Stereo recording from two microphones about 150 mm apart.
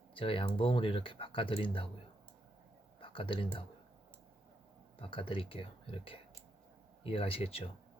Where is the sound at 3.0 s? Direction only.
35° left (ahead or behind).